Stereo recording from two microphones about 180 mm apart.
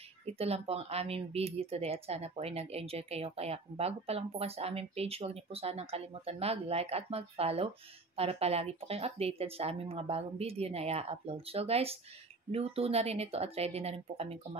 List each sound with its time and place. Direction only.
0.3 s speech: 35° right (ahead or behind)